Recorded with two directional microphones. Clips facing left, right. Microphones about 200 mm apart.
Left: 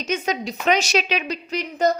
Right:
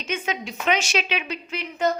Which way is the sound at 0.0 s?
40° left (ahead or behind).